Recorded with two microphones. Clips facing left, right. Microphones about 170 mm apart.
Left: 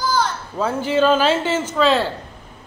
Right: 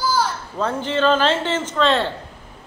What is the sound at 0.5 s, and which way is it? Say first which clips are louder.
A man's voice: left 3 dB; 5° left (ahead or behind).